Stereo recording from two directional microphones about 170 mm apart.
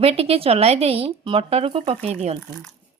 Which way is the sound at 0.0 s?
35° right (ahead or behind).